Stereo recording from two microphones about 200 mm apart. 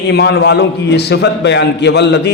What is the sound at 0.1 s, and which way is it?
A man's voice, 55° left (ahead or behind).